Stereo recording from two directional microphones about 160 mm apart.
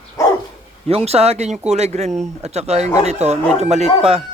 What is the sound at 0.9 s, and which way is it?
Speech, 40° right (ahead or behind).